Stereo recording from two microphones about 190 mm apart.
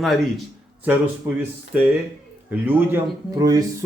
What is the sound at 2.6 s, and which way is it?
Speech, 10° right (ahead or behind).